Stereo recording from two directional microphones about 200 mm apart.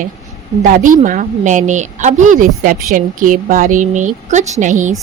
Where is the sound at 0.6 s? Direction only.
40° right (ahead or behind).